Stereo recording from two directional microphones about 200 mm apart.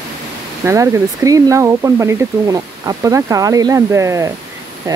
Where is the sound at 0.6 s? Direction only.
15° right (ahead or behind).